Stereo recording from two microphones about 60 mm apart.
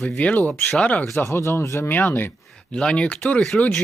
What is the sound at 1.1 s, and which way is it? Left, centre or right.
Speech, left.